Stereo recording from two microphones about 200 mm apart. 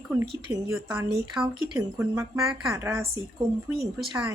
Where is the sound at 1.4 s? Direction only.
10° right (ahead or behind).